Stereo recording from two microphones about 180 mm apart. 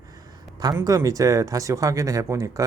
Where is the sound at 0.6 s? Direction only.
20° right (ahead or behind).